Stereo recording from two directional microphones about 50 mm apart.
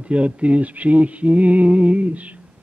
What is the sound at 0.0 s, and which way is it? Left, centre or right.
Speech, right.